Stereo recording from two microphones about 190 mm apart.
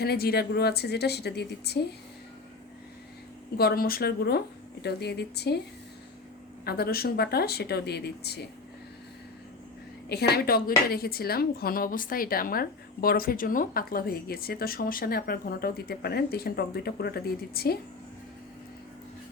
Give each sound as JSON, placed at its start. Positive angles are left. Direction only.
{"t": 0.0, "sound": "speech", "side_deg": 55}
{"t": 3.6, "sound": "speech", "side_deg": 55}
{"t": 6.7, "sound": "speech", "side_deg": 55}
{"t": 10.1, "sound": "a woman's voice", "side_deg": 60}